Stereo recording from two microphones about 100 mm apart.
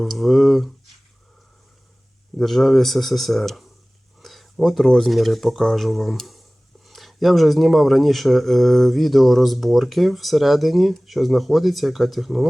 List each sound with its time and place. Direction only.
0.0 s speech: centre (ahead or behind)
2.4 s speech: centre (ahead or behind)